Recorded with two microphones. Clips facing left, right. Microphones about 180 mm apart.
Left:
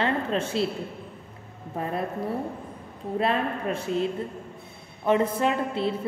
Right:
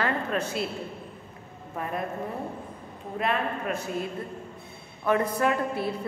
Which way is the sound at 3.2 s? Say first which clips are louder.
Left 2 dB; 30° left (ahead or behind).